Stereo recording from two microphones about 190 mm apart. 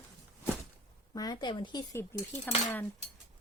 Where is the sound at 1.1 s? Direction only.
20° left (ahead or behind).